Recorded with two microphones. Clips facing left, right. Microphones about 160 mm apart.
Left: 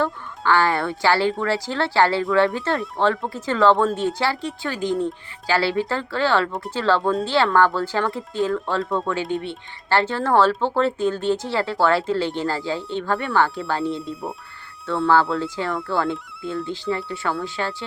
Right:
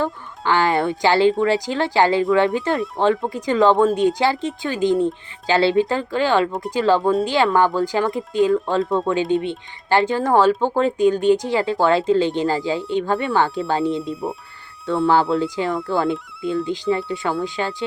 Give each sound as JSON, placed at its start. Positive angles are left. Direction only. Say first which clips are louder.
{"t": 0.0, "sound": "speech", "louder": "even", "side_deg": -20}
{"t": 7.0, "sound": "speech", "louder": "right 4 dB", "side_deg": -5}
{"t": 7.3, "sound": "speech", "louder": "right 1 dB", "side_deg": -15}